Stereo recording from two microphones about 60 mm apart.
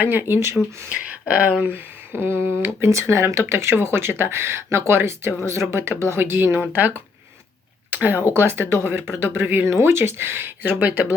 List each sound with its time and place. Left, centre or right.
0.0 s speech: right
0.9 s speech: right
2.9 s speech: right
7.9 s a sound: right
8.3 s speech: right